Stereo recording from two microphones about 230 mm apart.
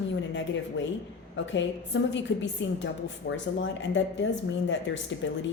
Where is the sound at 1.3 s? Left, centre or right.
Left.